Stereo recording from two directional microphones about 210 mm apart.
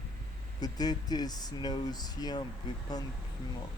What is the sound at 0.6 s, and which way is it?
Speech, 20° left (ahead or behind).